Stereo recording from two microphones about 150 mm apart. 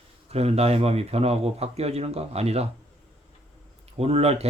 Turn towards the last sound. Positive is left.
turn(degrees=-45)  # may be behind; listen again after turning